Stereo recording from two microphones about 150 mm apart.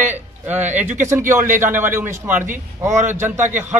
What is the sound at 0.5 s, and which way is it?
A man's voice, 10° right (ahead or behind).